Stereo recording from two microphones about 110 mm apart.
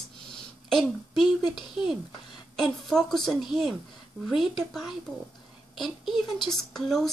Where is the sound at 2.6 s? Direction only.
5° left (ahead or behind).